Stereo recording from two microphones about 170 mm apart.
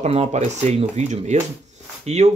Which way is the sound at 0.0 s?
40° right (ahead or behind).